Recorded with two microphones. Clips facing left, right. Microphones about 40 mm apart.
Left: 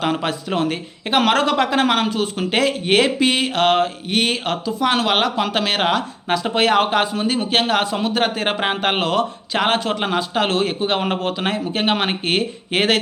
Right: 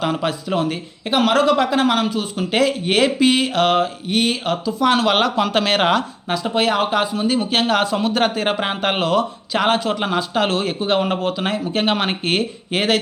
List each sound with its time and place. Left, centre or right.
0.0 s speech: left
1.1 s speech: left
5.0 s speech: centre
5.5 s speech: centre
6.2 s speech: left
7.3 s speech: left
8.4 s a man's voice: left
11.7 s speech: left
12.7 s speech: left